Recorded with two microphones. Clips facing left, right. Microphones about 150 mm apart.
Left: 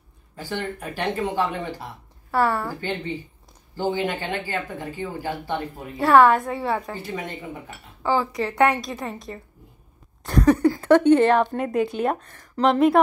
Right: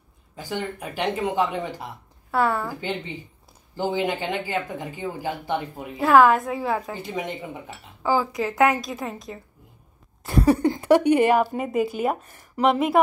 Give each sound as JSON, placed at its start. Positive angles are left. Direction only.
{"t": 0.4, "sound": "a woman's voice", "side_deg": -15}
{"t": 2.3, "sound": "a woman's voice", "side_deg": 0}
{"t": 3.9, "sound": "speech", "side_deg": -20}
{"t": 5.9, "sound": "a woman's voice", "side_deg": 0}
{"t": 6.9, "sound": "a woman's voice", "side_deg": -20}
{"t": 8.0, "sound": "a woman's voice", "side_deg": -5}
{"t": 10.2, "sound": "a sound", "side_deg": -5}
{"t": 10.6, "sound": "a woman's voice", "side_deg": -20}